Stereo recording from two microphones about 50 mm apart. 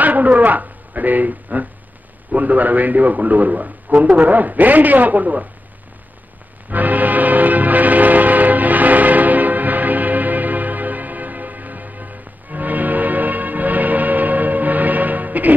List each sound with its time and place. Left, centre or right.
0.0 s a woman's voice: right
6.7 s music: right